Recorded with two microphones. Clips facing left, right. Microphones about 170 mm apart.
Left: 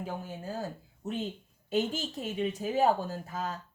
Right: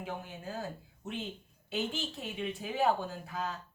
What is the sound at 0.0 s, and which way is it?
Speech, 35° left (ahead or behind).